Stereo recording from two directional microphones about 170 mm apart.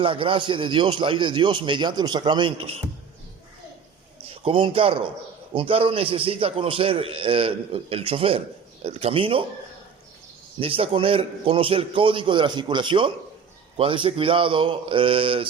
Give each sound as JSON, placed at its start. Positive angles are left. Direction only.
{"t": 0.0, "sound": "a man's voice", "side_deg": -30}
{"t": 4.3, "sound": "a man's voice", "side_deg": -30}
{"t": 10.6, "sound": "a man's voice", "side_deg": -30}